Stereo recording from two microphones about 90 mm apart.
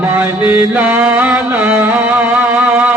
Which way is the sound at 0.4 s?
20° right (ahead or behind).